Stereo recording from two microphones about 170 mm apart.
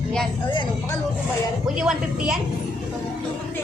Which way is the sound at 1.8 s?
5° right (ahead or behind).